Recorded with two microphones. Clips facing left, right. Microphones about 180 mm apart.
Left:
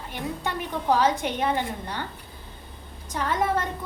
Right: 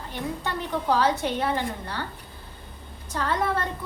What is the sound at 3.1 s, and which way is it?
Speech, 15° left (ahead or behind).